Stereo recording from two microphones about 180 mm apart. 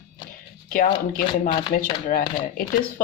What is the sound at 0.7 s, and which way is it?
Speech, 50° left (ahead or behind).